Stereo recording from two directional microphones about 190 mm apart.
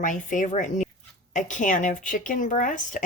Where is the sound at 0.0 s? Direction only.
40° left (ahead or behind).